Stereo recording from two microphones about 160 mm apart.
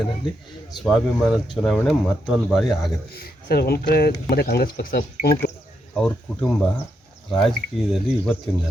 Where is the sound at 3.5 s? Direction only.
80° left.